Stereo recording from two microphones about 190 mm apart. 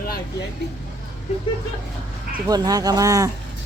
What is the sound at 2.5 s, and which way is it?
Speech, 20° right (ahead or behind).